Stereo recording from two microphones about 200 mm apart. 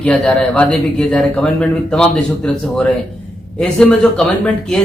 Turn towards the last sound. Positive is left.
turn(degrees=5)  # may be behind; listen again after turning